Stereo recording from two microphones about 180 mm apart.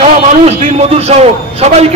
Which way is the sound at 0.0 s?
35° right (ahead or behind).